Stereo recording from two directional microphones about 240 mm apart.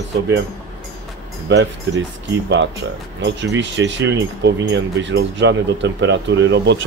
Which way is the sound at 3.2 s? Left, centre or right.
Right.